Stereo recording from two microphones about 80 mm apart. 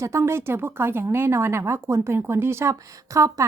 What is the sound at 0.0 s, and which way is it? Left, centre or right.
Speech, right.